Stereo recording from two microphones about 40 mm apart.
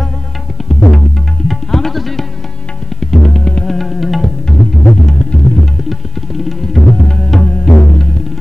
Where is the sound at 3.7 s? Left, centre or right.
Centre.